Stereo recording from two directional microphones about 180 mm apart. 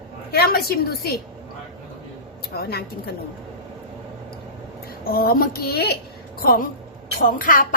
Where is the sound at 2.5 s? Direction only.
60° left (ahead or behind).